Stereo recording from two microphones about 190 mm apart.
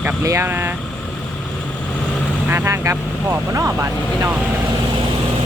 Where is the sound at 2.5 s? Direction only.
15° right (ahead or behind).